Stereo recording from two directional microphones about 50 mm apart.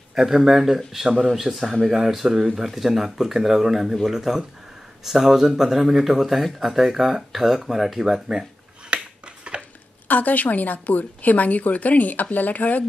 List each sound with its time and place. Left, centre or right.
0.1 s speech: centre
8.9 s a sound: right
9.6 s a woman's voice: left